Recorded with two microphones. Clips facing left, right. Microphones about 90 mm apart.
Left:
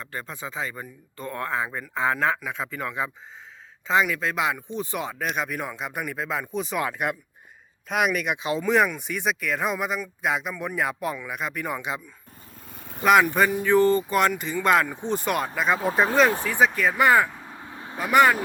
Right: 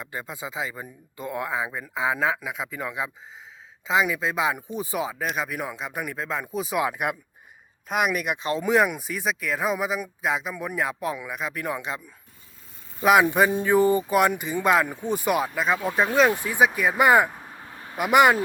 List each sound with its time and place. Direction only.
0.0 s speech: 10° right (ahead or behind)
12.7 s vehicle: 65° left (ahead or behind)
13.0 s speech: 5° right (ahead or behind)
16.5 s speech: 10° right (ahead or behind)
17.7 s vehicle: 25° left (ahead or behind)
17.9 s speech: 15° right (ahead or behind)